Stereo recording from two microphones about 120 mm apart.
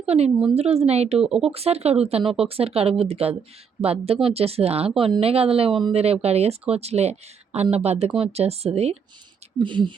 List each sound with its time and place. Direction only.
0.0 s a woman's voice: 60° right (ahead or behind)
1.2 s speech: 5° right (ahead or behind)
1.5 s speech: 60° right (ahead or behind)
9.6 s speech: 40° right (ahead or behind)